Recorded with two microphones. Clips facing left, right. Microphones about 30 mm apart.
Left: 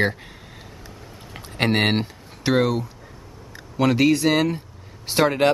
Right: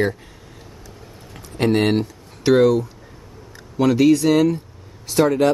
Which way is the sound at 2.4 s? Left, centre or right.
Centre.